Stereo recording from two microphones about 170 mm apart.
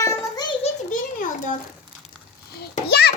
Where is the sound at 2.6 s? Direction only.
70° left (ahead or behind).